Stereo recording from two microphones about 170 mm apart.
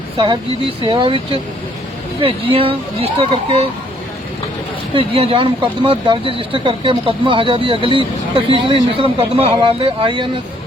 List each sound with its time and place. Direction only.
0.8 s speech: 30° right (ahead or behind)
4.9 s speech: 35° right (ahead or behind)